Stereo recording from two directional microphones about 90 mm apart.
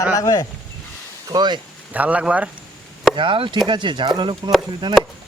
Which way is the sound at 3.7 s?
60° right (ahead or behind).